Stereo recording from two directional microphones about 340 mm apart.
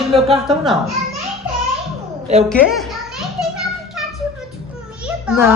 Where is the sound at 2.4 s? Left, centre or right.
Centre.